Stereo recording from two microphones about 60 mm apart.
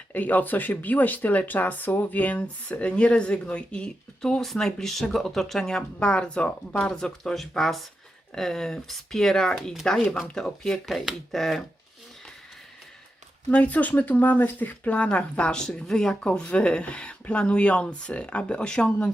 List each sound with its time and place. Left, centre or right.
0.1 s speech: left; by 10.8 s centre
10.8 s speech: centre
13.5 s speech: left
15.6 s speech: centre
16.2 s speech: centre